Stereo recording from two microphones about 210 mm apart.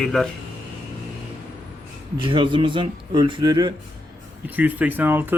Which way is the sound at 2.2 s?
25° right (ahead or behind).